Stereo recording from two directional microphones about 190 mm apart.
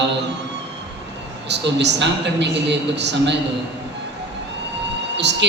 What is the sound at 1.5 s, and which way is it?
A woman's voice, 65° right (ahead or behind).